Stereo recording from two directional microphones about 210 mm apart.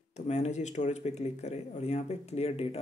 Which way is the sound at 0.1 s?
30° left (ahead or behind).